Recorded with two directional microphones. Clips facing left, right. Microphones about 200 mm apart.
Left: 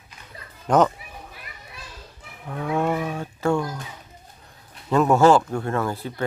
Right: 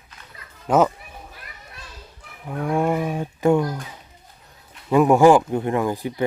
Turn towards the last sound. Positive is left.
turn(degrees=-15)  # may be behind; listen again after turning